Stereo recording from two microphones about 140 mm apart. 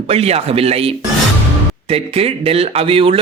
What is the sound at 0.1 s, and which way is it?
A man's voice, 45° right (ahead or behind).